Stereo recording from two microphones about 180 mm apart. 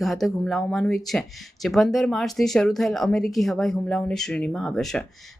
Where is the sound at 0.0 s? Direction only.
Centre (ahead or behind).